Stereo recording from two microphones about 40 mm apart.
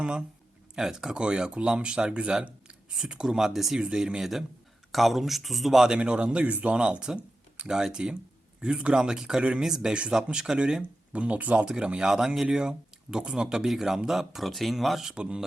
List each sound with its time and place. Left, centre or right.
0.0 s speech: right
1.2 s speech: right
4.2 s speech: centre
6.0 s speech: right; by 9.4 s centre
9.4 s speech: right
11.1 s speech: right
11.6 s speech: right; by 15.0 s centre
15.1 s speech: right